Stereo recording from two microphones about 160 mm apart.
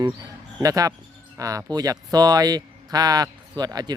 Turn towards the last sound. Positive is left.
turn(degrees=-25)  # may be behind; listen again after turning